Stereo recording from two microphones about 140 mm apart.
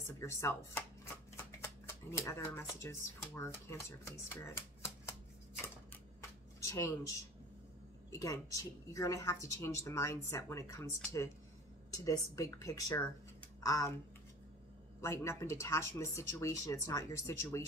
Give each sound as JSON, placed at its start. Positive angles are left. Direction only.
{"t": 0.0, "sound": "speech", "side_deg": 20}
{"t": 6.6, "sound": "a woman's voice", "side_deg": 20}
{"t": 15.0, "sound": "a woman's voice", "side_deg": 20}